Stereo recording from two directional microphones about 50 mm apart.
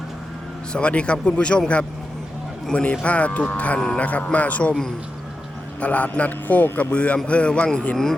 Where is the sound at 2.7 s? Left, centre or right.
Left.